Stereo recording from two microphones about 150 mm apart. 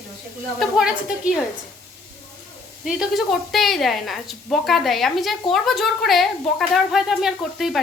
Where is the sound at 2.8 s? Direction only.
Centre (ahead or behind).